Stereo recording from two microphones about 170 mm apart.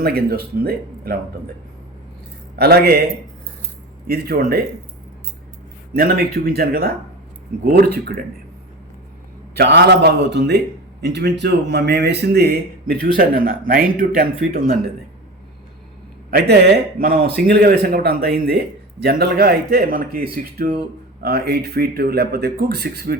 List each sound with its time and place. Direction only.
0.0 s a man's voice: 65° right (ahead or behind)
2.6 s a man's voice: 70° right (ahead or behind)
6.0 s a man's voice: 65° right (ahead or behind)
7.9 s speech: 65° right (ahead or behind)
9.6 s a man's voice: 75° right (ahead or behind); by 14.6 s 60° right (ahead or behind)
17.0 s a man's voice: 65° right (ahead or behind)